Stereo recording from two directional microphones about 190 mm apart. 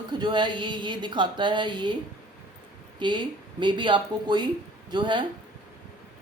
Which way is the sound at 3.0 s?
25° right (ahead or behind).